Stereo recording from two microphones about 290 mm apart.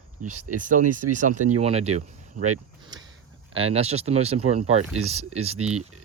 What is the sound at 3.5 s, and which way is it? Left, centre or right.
Speech, centre.